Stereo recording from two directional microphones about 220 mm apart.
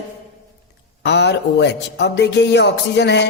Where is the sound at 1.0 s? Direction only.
50° left (ahead or behind).